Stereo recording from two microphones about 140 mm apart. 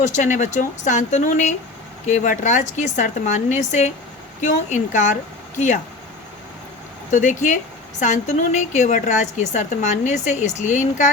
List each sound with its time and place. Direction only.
0.0 s a woman's voice: 60° left (ahead or behind)
7.1 s a woman's voice: 60° left (ahead or behind)